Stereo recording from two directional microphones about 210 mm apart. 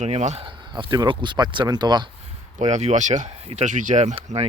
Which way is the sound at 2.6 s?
35° right (ahead or behind).